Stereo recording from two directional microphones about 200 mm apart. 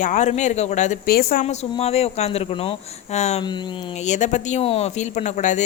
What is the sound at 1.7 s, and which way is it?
Speech, 30° left (ahead or behind).